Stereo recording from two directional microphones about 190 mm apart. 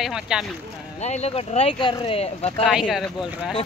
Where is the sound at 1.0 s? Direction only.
35° left (ahead or behind).